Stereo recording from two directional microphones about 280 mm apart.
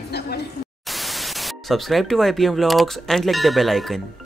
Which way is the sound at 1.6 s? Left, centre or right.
Centre.